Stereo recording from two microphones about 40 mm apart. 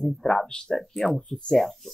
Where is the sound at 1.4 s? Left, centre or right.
Centre.